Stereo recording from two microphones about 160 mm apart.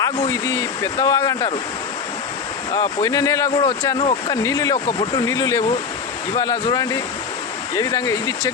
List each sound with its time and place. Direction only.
0.0 s speech: 25° left (ahead or behind)
2.7 s speech: 20° left (ahead or behind)
4.4 s speech: 20° left (ahead or behind)